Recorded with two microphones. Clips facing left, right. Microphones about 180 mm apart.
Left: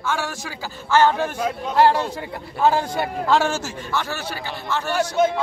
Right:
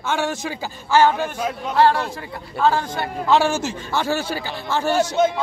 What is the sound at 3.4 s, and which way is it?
Speech, 15° right (ahead or behind).